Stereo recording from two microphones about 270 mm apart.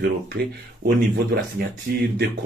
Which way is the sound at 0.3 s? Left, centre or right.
Right.